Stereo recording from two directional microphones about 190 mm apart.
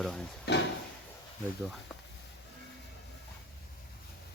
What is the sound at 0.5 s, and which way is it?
Drawer open or close, 60° left (ahead or behind).